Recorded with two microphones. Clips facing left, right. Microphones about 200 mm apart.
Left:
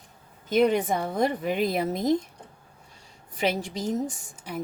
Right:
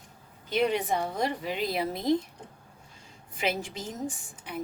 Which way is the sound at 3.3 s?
40° left (ahead or behind).